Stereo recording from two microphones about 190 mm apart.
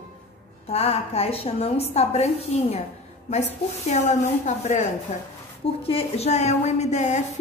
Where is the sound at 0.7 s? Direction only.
30° left (ahead or behind).